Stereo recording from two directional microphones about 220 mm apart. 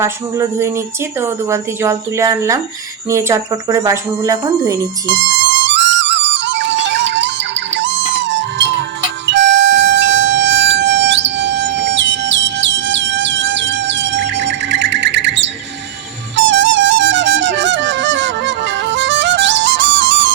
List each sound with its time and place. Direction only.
0.0 s speech: 15° right (ahead or behind)
5.5 s music: 55° right (ahead or behind)